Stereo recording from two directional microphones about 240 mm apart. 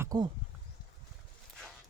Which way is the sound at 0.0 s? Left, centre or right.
Centre.